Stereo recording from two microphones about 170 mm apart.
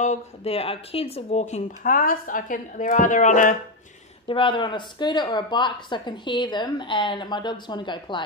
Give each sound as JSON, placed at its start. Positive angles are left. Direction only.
{"t": 0.0, "sound": "speech", "side_deg": 40}
{"t": 4.3, "sound": "speech", "side_deg": 30}